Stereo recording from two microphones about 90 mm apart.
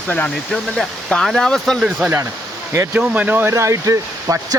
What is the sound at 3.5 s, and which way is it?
Speech, 35° right (ahead or behind).